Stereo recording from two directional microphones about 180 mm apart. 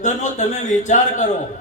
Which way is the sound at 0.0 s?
40° left (ahead or behind).